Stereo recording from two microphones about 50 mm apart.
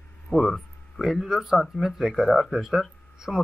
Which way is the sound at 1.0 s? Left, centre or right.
Centre.